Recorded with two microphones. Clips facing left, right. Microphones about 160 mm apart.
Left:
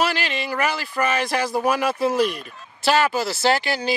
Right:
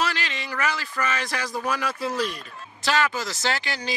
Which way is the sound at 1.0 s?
30° left (ahead or behind).